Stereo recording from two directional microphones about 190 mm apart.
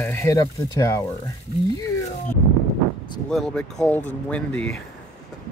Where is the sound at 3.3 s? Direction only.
Centre (ahead or behind).